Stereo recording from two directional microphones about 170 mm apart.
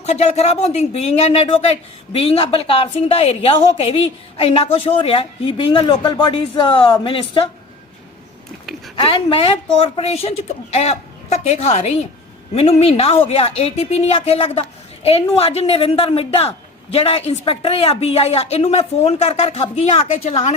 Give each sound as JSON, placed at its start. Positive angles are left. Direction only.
{"t": 0.0, "sound": "a woman's voice", "side_deg": 40}
{"t": 9.0, "sound": "a woman's voice", "side_deg": 30}